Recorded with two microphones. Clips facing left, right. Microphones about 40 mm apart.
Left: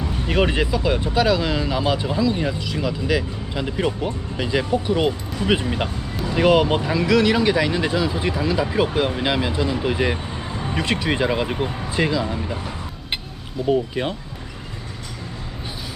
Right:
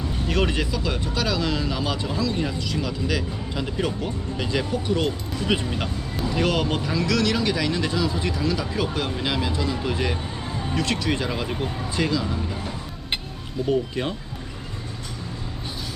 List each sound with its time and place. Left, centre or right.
0.3 s speech: centre
13.7 s speech: centre